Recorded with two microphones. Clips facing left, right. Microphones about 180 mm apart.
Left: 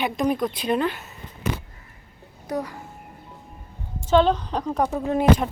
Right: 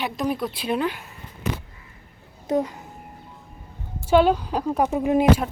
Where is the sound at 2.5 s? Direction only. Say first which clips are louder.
Right 5 dB; 20° right (ahead or behind).